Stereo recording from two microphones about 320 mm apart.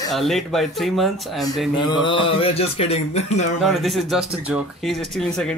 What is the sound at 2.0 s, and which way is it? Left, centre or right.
Music, centre.